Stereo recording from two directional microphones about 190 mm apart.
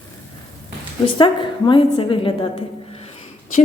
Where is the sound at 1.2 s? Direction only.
25° left (ahead or behind).